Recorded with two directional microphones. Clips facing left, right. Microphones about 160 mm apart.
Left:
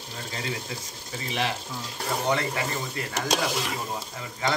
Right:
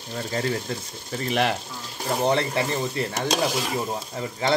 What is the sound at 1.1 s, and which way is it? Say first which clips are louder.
Speech: right 6 dB; 55° right (ahead or behind).